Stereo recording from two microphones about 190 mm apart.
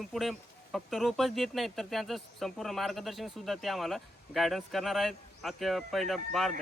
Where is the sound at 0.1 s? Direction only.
Centre (ahead or behind).